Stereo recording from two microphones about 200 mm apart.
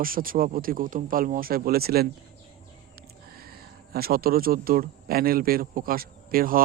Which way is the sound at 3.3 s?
50° right (ahead or behind).